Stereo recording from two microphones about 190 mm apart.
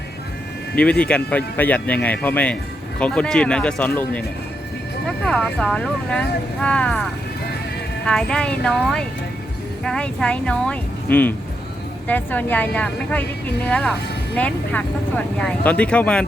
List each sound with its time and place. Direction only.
0.8 s speech: 5° left (ahead or behind)
8.0 s speech: 5° left (ahead or behind)